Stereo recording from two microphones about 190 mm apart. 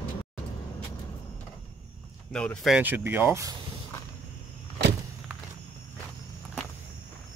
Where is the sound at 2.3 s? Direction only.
5° left (ahead or behind); by 3.5 s 15° right (ahead or behind).